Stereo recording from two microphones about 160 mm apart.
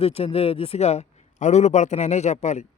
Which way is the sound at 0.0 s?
40° left (ahead or behind).